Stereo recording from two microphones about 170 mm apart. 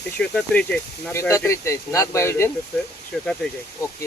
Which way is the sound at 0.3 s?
5° left (ahead or behind).